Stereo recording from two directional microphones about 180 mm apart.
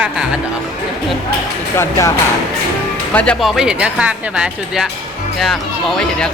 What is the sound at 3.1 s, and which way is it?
Speech, 5° left (ahead or behind).